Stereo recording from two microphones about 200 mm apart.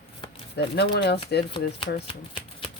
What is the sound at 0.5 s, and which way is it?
Speech, 55° left (ahead or behind).